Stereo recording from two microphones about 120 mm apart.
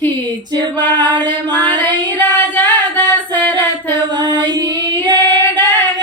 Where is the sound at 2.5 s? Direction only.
15° left (ahead or behind).